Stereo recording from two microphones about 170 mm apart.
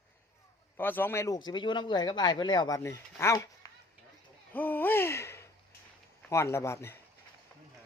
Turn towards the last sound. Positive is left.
turn(degrees=15)  # may be behind; listen again after turning